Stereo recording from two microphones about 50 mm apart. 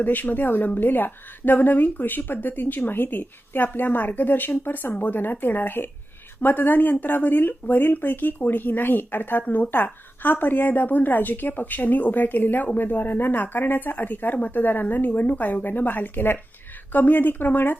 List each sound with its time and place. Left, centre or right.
0.0 s a woman's voice: left